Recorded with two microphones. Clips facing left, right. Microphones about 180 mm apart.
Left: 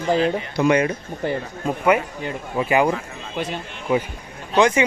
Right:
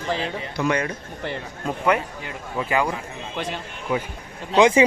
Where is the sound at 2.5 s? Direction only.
15° left (ahead or behind).